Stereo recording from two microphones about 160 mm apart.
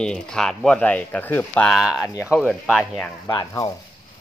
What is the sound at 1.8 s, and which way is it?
Speech, 5° right (ahead or behind).